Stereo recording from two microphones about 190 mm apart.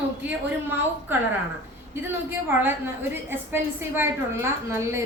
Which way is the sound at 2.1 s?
10° right (ahead or behind).